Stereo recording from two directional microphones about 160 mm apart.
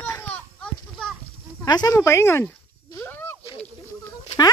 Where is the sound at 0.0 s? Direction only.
10° left (ahead or behind).